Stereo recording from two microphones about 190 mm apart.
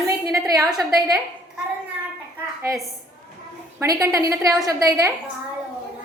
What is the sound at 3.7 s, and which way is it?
A woman's voice, 15° right (ahead or behind).